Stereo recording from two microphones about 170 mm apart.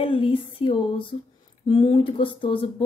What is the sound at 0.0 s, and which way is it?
Female singing, 30° left (ahead or behind).